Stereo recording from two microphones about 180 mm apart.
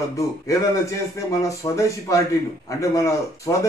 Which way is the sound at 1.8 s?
15° left (ahead or behind).